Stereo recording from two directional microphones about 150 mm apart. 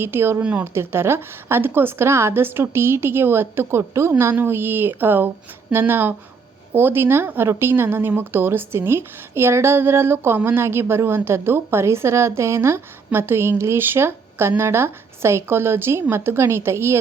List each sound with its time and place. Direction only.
0.0 s speech: 15° right (ahead or behind)